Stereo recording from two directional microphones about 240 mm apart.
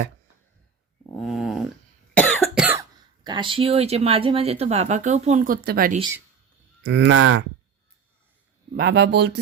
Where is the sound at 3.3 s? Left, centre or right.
Centre; by 7.4 s right.